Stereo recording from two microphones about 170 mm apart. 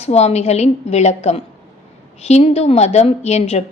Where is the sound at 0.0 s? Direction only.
40° left (ahead or behind).